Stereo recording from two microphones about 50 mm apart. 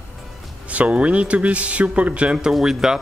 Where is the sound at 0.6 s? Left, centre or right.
Right.